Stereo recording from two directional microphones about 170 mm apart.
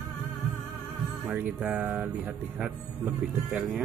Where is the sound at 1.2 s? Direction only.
10° right (ahead or behind).